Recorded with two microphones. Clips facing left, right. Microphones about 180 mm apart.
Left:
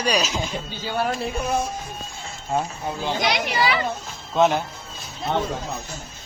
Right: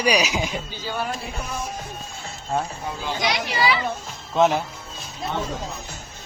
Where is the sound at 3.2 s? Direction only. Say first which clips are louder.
Even; 55° left (ahead or behind).